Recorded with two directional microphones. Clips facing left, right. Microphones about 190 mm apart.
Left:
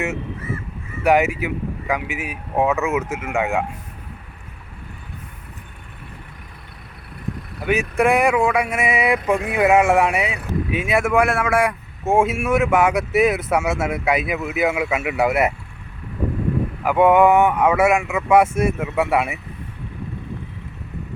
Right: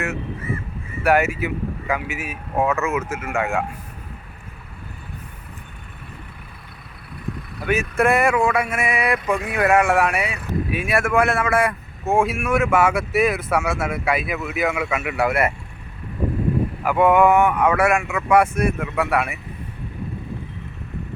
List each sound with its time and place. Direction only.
1.0 s speech: 15° left (ahead or behind)
7.7 s speech: 15° left (ahead or behind)
12.1 s speech: 25° left (ahead or behind)
16.8 s speech: 20° left (ahead or behind)